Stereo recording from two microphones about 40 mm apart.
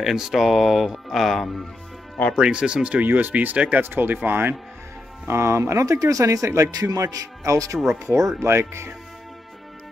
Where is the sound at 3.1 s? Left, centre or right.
Right.